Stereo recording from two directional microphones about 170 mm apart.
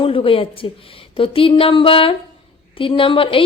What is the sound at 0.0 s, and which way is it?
A woman's voice, 30° left (ahead or behind).